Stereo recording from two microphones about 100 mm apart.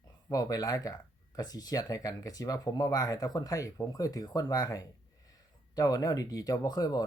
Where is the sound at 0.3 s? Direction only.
40° left (ahead or behind).